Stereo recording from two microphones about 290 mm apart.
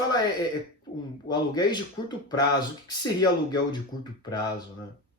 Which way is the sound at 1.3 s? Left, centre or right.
Centre.